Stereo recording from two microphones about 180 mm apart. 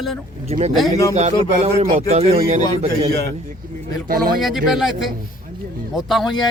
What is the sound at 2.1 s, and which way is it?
Speech, 35° right (ahead or behind).